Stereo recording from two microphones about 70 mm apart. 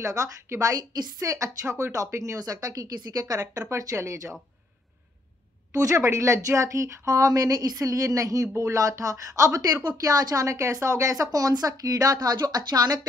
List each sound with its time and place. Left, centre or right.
0.0 s a woman's voice: right
2.3 s a woman's voice: right
5.7 s a woman's voice: right